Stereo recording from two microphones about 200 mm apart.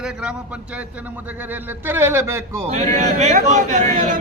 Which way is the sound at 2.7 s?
35° right (ahead or behind).